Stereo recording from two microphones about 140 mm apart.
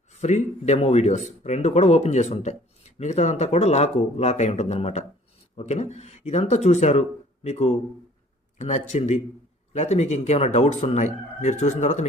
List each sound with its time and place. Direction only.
0.1 s speech: 55° left (ahead or behind)